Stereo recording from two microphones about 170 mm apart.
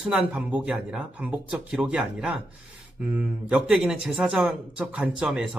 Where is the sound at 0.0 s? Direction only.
5° right (ahead or behind).